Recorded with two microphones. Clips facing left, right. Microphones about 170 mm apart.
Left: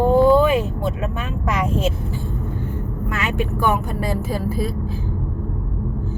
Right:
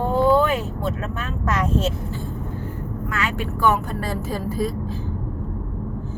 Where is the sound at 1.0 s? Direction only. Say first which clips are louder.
Left 2 dB; 10° left (ahead or behind).